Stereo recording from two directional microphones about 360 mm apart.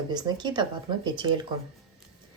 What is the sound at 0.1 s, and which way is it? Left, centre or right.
Speech, centre.